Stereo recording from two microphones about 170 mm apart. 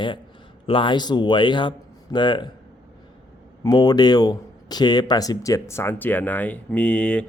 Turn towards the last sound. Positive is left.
turn(degrees=5)  # may be behind; listen again after turning